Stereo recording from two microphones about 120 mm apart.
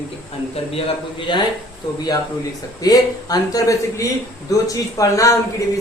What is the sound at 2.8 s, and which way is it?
A man's voice, 30° left (ahead or behind).